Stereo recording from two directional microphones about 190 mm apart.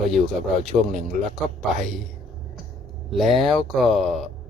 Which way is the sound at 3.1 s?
Centre (ahead or behind).